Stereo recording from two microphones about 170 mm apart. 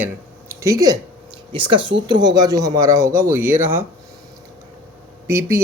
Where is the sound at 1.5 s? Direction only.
30° right (ahead or behind); by 3.8 s 15° right (ahead or behind).